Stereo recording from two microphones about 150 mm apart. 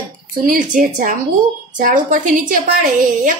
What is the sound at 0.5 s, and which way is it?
A woman's voice, 60° right (ahead or behind).